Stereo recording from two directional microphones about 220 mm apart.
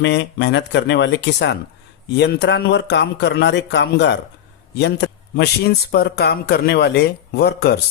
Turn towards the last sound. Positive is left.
turn(degrees=45)  # may be behind; listen again after turning